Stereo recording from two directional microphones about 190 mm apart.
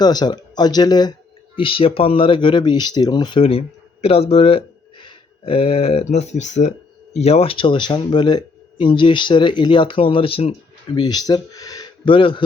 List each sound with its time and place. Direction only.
0.0 s speech: 20° left (ahead or behind)